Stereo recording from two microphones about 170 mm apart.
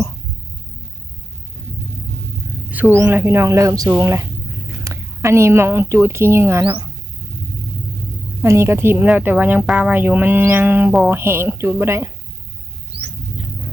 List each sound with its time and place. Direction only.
2.6 s a sound: 10° right (ahead or behind)
3.0 s speech: 15° right (ahead or behind)
8.4 s speech: 15° right (ahead or behind)